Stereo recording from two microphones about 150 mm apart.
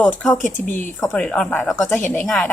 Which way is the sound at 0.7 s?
10° left (ahead or behind).